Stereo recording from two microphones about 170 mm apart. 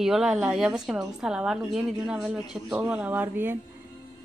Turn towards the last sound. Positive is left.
turn(degrees=-10)  # may be behind; listen again after turning